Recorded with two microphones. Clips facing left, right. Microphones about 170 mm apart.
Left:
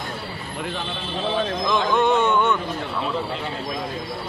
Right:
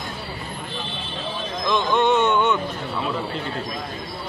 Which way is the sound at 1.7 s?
5° left (ahead or behind).